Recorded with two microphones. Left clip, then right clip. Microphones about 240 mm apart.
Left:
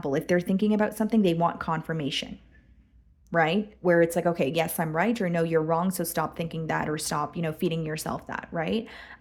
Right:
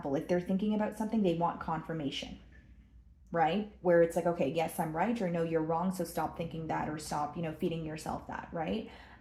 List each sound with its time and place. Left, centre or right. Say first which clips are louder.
0.0 s speech: left 7 dB; left
3.3 s speech: left 6 dB; left